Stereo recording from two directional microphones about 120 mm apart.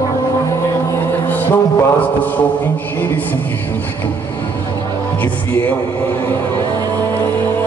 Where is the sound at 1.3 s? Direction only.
15° left (ahead or behind).